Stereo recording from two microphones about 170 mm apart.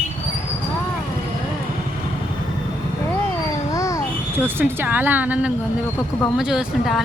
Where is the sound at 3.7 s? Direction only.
20° left (ahead or behind).